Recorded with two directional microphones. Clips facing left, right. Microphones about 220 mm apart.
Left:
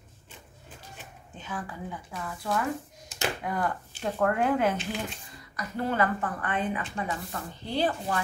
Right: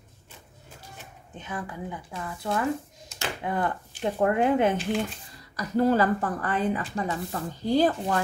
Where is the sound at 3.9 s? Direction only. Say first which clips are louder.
Right 3 dB; 15° right (ahead or behind).